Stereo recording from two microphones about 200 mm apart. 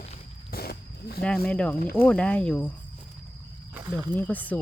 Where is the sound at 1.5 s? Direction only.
5° left (ahead or behind).